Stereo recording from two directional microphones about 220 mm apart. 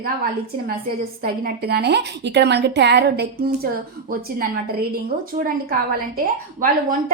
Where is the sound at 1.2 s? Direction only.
45° right (ahead or behind).